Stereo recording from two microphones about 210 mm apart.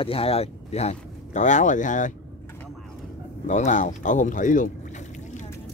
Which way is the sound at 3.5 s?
35° left (ahead or behind).